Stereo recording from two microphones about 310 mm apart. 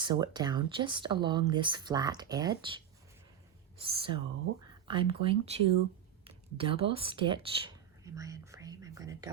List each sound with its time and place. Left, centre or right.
0.0 s speech: centre
3.8 s speech: centre
4.6 s a sound: centre
5.2 s speech: centre